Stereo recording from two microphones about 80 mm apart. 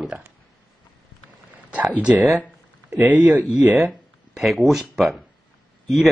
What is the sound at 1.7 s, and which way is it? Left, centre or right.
Speech, centre.